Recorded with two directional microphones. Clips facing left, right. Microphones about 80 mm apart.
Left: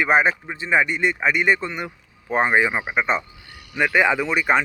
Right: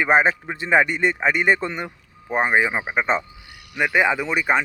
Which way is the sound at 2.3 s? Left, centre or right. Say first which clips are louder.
Left 1 dB; centre.